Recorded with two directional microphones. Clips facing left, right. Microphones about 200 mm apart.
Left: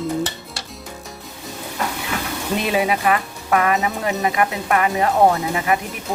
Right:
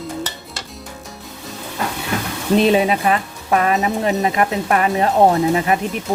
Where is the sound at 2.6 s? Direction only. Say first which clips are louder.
Right 4 dB; 25° right (ahead or behind).